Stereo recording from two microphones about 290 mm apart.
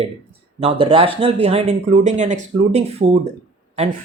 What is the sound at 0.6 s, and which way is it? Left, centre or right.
Speech, centre.